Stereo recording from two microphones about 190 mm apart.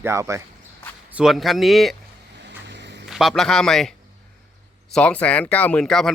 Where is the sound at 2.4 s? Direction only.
65° right (ahead or behind).